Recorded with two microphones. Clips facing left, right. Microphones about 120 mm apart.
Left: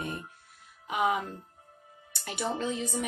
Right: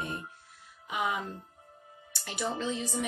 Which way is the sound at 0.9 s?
50° left (ahead or behind).